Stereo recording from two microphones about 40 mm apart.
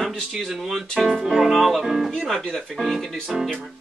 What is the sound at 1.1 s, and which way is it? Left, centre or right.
Speech, centre.